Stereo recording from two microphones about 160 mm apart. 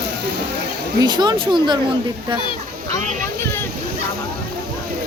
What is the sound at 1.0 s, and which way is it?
Speech, 25° right (ahead or behind).